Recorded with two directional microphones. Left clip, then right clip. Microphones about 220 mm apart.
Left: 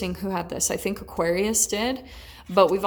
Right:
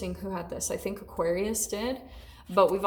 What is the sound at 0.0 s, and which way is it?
A woman's voice, 30° left (ahead or behind).